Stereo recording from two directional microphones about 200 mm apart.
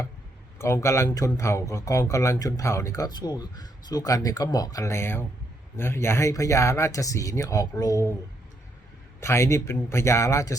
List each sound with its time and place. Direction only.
0.6 s speech: 15° left (ahead or behind)
9.2 s speech: 15° left (ahead or behind)